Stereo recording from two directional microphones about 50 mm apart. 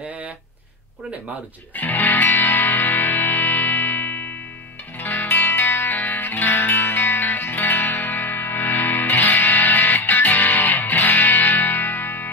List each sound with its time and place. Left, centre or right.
1.8 s music: left